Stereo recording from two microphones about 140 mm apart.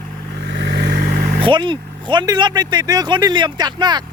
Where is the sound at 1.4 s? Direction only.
35° right (ahead or behind).